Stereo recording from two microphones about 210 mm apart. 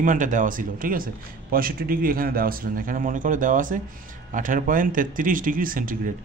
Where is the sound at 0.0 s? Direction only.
35° right (ahead or behind).